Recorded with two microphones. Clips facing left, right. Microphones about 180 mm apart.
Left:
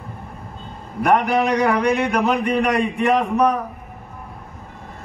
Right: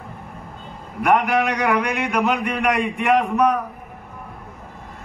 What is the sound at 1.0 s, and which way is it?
A man's voice, 35° left (ahead or behind).